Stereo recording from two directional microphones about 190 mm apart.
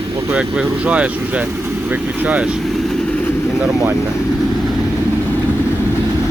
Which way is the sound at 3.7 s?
20° right (ahead or behind).